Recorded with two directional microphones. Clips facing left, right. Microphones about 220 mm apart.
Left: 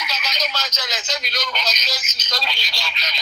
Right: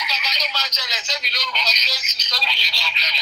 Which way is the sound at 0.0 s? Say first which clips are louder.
Left 3 dB; 50° left (ahead or behind).